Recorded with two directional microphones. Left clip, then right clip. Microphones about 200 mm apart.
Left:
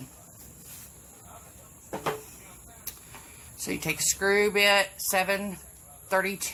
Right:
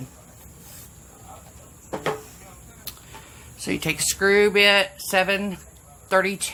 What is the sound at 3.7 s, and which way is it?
Speech, 30° right (ahead or behind).